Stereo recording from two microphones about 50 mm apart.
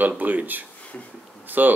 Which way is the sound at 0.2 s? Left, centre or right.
Right.